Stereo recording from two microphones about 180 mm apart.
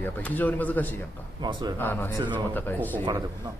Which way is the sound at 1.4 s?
25° right (ahead or behind).